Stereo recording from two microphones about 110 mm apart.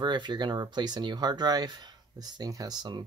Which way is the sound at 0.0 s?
45° right (ahead or behind).